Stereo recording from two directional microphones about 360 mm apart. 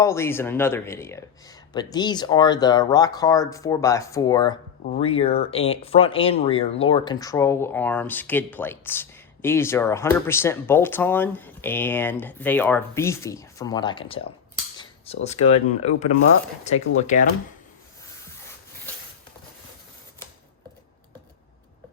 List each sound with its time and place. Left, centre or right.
0.0 s speech: centre